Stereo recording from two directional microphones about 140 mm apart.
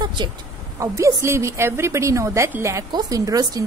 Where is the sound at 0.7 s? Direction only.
20° right (ahead or behind).